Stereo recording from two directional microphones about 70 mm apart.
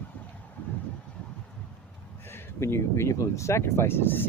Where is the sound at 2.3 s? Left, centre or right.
Left.